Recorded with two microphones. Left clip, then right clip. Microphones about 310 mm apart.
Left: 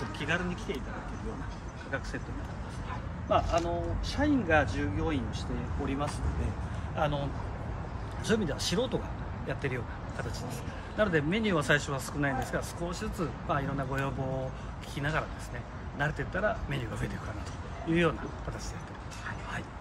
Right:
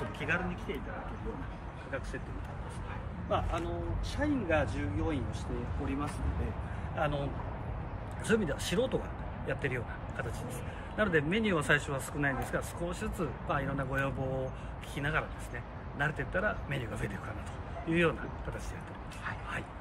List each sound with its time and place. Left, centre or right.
0.2 s speech: centre
3.3 s speech: left
7.0 s speech: centre
8.3 s speech: centre
11.0 s speech: centre